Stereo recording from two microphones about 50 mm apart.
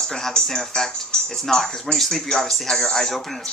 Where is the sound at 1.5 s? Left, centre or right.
Centre.